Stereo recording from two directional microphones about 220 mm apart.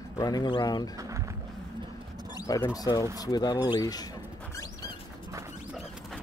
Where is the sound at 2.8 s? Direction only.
15° left (ahead or behind).